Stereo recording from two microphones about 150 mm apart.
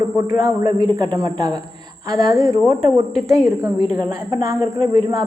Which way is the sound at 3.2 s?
Centre (ahead or behind).